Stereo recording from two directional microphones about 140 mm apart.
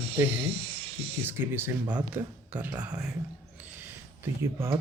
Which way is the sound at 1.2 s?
15° right (ahead or behind).